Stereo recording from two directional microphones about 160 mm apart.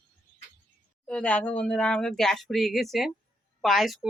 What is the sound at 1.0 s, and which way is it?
Speech, 10° left (ahead or behind).